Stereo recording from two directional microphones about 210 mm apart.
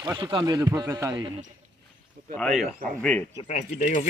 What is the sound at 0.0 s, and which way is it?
A man's voice, 20° right (ahead or behind).